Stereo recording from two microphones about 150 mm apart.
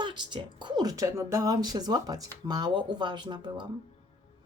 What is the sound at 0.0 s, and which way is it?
Speech, 30° right (ahead or behind).